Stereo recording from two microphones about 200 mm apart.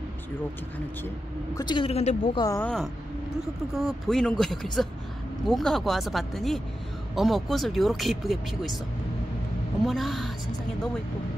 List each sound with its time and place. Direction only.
1.5 s a woman's voice: 20° left (ahead or behind)
2.4 s speech: 15° left (ahead or behind)
3.7 s speech: centre (ahead or behind)
9.8 s speech: centre (ahead or behind)